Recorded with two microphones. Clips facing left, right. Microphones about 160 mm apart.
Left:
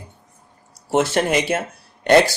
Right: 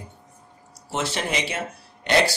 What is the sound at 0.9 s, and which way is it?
Speech, 50° left (ahead or behind).